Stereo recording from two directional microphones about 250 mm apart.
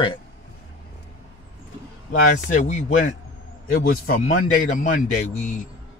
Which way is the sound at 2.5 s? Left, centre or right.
Left.